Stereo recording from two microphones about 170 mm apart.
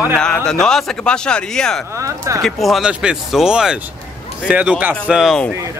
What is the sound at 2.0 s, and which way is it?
Speech, 20° right (ahead or behind).